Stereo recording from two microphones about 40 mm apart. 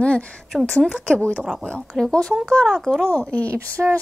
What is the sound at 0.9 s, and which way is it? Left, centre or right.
Speech, left.